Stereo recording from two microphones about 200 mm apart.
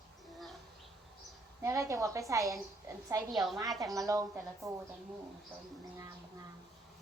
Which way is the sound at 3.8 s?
15° right (ahead or behind).